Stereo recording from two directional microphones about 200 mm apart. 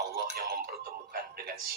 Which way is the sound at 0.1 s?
50° right (ahead or behind).